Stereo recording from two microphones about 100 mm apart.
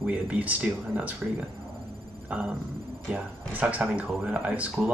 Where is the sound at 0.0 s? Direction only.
15° right (ahead or behind).